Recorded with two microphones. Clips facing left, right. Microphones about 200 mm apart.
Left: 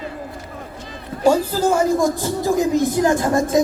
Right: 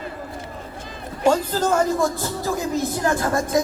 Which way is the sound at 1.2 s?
10° left (ahead or behind).